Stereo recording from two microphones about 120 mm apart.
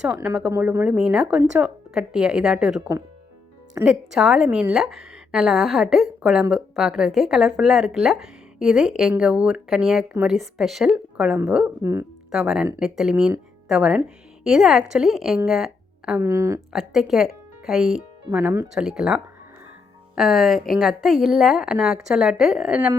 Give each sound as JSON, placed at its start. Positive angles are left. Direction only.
{"t": 0.0, "sound": "a woman's voice", "side_deg": -15}
{"t": 11.8, "sound": "a woman's voice", "side_deg": -25}
{"t": 12.3, "sound": "a woman's voice", "side_deg": -5}
{"t": 15.4, "sound": "a sound", "side_deg": 0}
{"t": 16.2, "sound": "a woman's voice", "side_deg": -25}
{"t": 16.7, "sound": "a woman's voice", "side_deg": 0}